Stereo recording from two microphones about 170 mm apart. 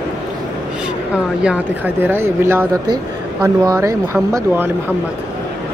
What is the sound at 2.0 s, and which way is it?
Speech, 15° right (ahead or behind).